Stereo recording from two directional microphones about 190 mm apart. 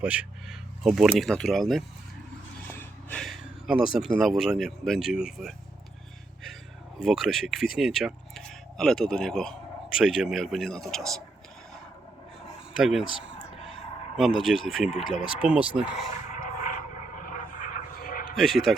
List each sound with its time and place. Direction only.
0.0 s speech: 5° right (ahead or behind)
7.0 s speech: centre (ahead or behind)
12.8 s speech: centre (ahead or behind)
13.1 s a sound: 25° left (ahead or behind)
14.2 s speech: centre (ahead or behind)
14.8 s speech: 30° left (ahead or behind)
15.4 s speech: 5° right (ahead or behind)
16.4 s a sound: 45° left (ahead or behind)
18.3 s speech: centre (ahead or behind)